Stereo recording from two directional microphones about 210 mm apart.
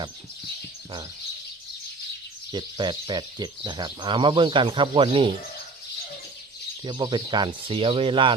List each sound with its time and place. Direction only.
2.5 s speech: 20° right (ahead or behind)
6.8 s speech: 20° right (ahead or behind)